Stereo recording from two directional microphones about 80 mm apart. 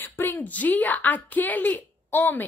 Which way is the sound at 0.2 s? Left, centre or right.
Left.